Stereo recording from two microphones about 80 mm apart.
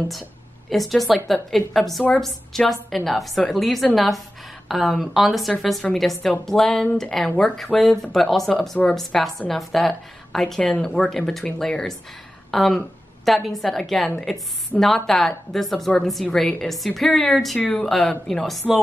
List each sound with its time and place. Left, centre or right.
0.7 s a woman's voice: centre
14.7 s a woman's voice: centre
15.0 s speech: centre
17.6 s speech: centre
17.8 s speech: centre